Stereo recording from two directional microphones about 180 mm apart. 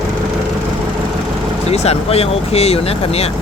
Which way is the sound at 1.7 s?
35° left (ahead or behind).